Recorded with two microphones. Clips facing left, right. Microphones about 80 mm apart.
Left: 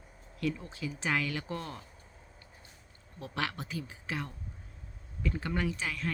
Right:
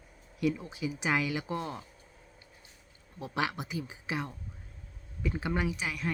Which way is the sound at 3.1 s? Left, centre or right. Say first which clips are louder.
Right 3 dB; centre.